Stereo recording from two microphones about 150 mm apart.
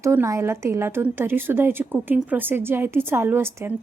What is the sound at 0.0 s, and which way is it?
A woman's voice, 20° right (ahead or behind).